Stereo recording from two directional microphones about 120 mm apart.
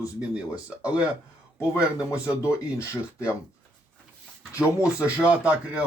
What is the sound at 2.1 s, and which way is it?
Speech, 25° left (ahead or behind).